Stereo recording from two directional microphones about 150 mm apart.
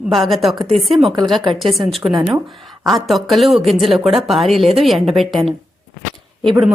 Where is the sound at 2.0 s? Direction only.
30° right (ahead or behind).